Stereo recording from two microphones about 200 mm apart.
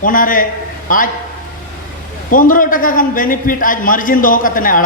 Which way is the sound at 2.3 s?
45° left (ahead or behind).